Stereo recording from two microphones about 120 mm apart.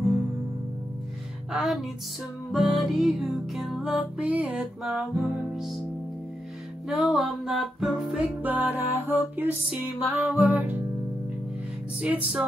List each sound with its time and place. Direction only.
1.5 s music: centre (ahead or behind)
6.9 s music: centre (ahead or behind)
8.4 s music: 15° right (ahead or behind)
12.0 s music: 10° right (ahead or behind)